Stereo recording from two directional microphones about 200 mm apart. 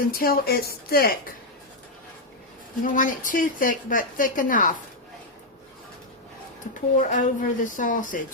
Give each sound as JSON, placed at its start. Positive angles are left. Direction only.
{"t": 0.1, "sound": "speech", "side_deg": 45}
{"t": 2.8, "sound": "a woman's voice", "side_deg": 40}
{"t": 6.7, "sound": "a woman's voice", "side_deg": 40}